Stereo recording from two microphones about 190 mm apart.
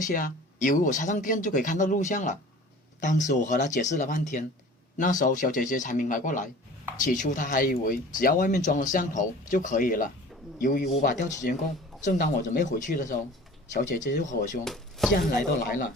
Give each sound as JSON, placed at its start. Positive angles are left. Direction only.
{"t": 0.0, "sound": "speech", "side_deg": 45}
{"t": 14.6, "sound": "speech", "side_deg": 0}
{"t": 15.1, "sound": "speech", "side_deg": 50}